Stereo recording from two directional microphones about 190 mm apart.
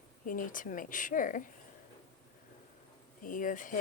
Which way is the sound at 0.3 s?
45° left (ahead or behind).